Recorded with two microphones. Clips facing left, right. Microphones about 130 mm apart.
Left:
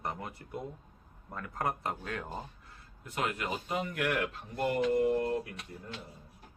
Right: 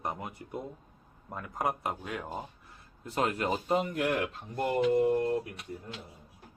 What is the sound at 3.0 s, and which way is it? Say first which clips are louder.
Speech: right 5 dB; 35° right (ahead or behind).